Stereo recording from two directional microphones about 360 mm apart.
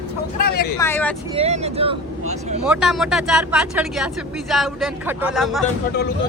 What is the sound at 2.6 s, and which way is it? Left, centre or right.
Speech, centre.